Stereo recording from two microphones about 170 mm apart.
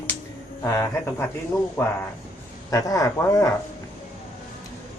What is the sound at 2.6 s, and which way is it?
Speech, 20° left (ahead or behind).